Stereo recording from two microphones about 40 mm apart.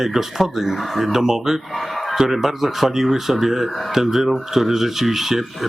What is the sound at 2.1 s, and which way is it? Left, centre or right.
Speech, centre.